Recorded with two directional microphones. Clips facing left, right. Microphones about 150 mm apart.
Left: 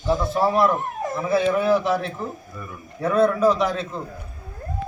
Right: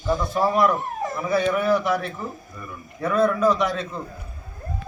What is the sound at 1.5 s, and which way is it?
Speech, 25° left (ahead or behind).